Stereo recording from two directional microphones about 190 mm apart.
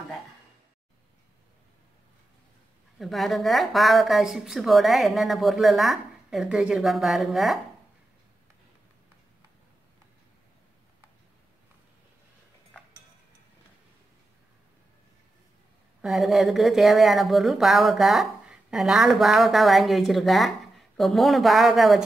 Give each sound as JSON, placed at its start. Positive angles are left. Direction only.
{"t": 3.0, "sound": "speech", "side_deg": 0}
{"t": 16.0, "sound": "speech", "side_deg": 0}